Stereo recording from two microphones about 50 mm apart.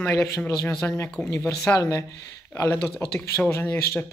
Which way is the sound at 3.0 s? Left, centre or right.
Left.